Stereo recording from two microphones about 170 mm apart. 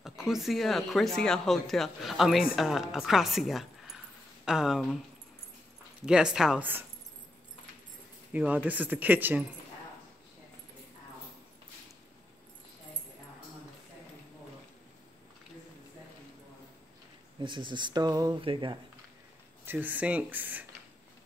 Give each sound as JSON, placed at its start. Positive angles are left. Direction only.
{"t": 0.0, "sound": "speech", "side_deg": -5}
{"t": 6.0, "sound": "speech", "side_deg": -5}
{"t": 8.3, "sound": "speech", "side_deg": -10}
{"t": 17.4, "sound": "speech", "side_deg": -30}
{"t": 19.6, "sound": "speech", "side_deg": -10}